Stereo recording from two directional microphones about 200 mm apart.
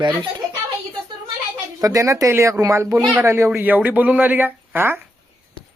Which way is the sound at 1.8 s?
15° right (ahead or behind).